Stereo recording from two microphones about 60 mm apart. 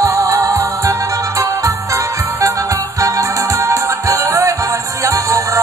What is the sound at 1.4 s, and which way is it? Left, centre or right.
Music, right.